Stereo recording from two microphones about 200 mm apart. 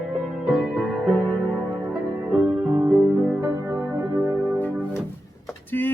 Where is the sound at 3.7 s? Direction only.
5° right (ahead or behind).